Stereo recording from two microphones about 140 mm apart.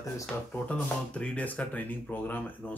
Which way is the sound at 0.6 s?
10° left (ahead or behind).